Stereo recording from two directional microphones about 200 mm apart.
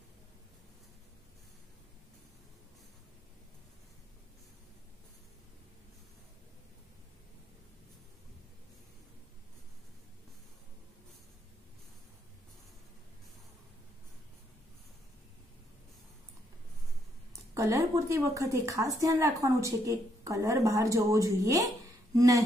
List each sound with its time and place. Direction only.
17.3 s a woman's voice: 15° right (ahead or behind)